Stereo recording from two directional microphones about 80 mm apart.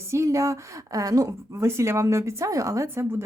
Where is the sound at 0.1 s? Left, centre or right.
Right.